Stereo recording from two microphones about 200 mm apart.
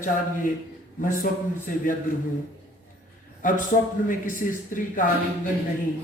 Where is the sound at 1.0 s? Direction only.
45° left (ahead or behind).